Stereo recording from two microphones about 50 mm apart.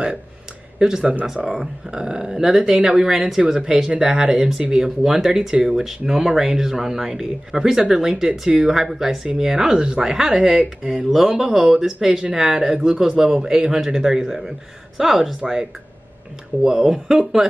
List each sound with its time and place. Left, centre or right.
0.7 s speech: centre
16.6 s speech: centre